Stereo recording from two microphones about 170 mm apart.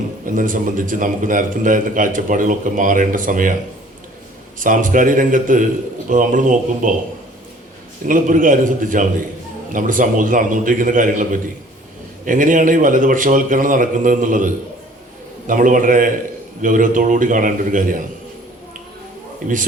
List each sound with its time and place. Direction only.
0.3 s a man's voice: 50° right (ahead or behind)
4.6 s a man's voice: 50° right (ahead or behind)
8.0 s a man's voice: 50° right (ahead or behind)
19.4 s a man's voice: 50° right (ahead or behind)